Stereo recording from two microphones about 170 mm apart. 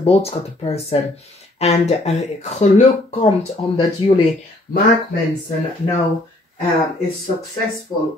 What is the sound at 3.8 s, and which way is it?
Speech, 30° left (ahead or behind).